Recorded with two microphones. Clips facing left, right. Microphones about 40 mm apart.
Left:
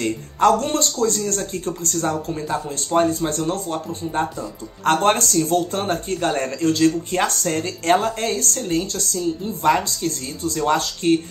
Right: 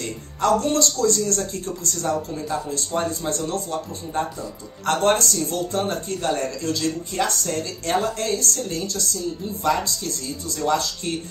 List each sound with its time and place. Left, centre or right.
0.0 s speech: left
2.7 s speech: left